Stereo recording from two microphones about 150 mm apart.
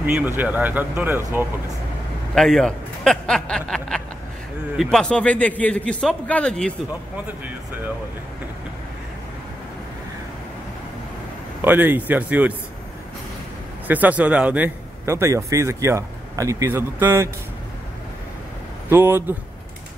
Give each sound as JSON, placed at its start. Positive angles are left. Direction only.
{"t": 0.0, "sound": "a man's voice", "side_deg": -10}
{"t": 2.3, "sound": "a man's voice", "side_deg": 0}
{"t": 11.6, "sound": "a man's voice", "side_deg": -10}
{"t": 13.8, "sound": "a man's voice", "side_deg": -10}
{"t": 18.9, "sound": "a man's voice", "side_deg": -15}